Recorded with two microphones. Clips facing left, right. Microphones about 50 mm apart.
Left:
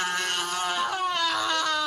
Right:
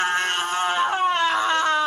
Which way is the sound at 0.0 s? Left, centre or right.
Right.